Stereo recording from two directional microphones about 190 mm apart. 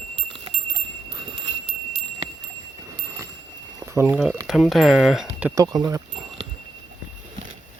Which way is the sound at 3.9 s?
10° right (ahead or behind).